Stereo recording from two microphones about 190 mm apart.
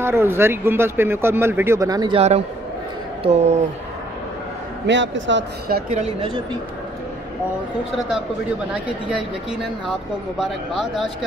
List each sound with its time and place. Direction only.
0.0 s a woman's voice: 15° right (ahead or behind); by 3.5 s 35° right (ahead or behind)
4.8 s a man's voice: 75° right (ahead or behind)
5.7 s a woman's voice: 50° right (ahead or behind)
5.9 s a woman's voice: 35° right (ahead or behind)
10.4 s speech: 5° right (ahead or behind)